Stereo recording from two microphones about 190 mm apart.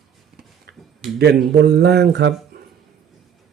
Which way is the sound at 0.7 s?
55° right (ahead or behind).